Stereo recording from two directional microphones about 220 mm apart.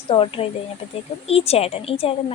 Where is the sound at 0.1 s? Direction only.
25° left (ahead or behind).